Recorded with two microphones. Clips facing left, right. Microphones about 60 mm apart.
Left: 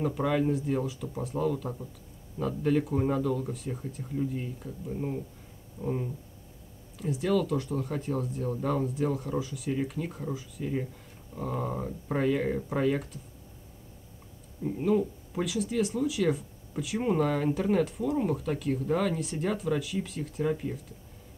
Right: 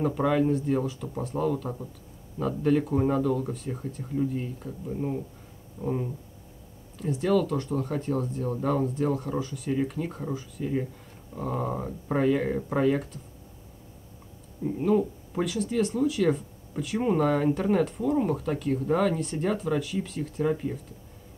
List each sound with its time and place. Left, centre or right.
0.0 s speech: centre
5.8 s speech: right
7.0 s speech: centre
14.6 s speech: centre